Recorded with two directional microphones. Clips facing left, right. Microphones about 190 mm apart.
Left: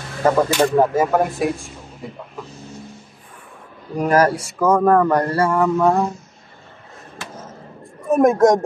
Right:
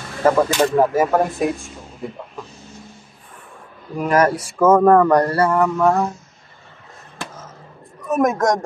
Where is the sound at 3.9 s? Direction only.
35° left (ahead or behind).